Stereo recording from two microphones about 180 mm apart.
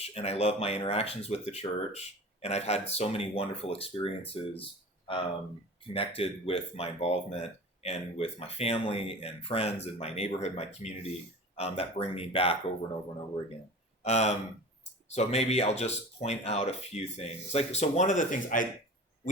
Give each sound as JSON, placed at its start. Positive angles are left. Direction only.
{"t": 0.0, "sound": "speech", "side_deg": 35}
{"t": 14.0, "sound": "speech", "side_deg": 40}